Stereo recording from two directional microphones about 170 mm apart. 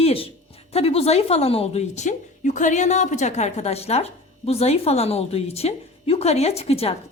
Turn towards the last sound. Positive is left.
turn(degrees=35)  # may be behind; listen again after turning